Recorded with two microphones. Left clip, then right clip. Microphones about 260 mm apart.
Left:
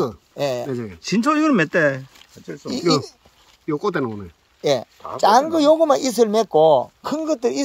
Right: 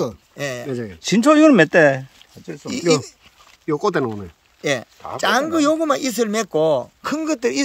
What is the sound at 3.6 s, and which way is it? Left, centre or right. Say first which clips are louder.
Speech: right 3 dB; centre.